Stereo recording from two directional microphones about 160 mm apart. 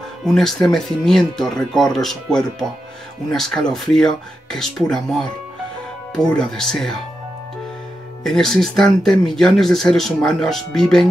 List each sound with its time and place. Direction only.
0.2 s speech: centre (ahead or behind)
6.3 s speech: 5° left (ahead or behind)
8.2 s speech: 5° left (ahead or behind)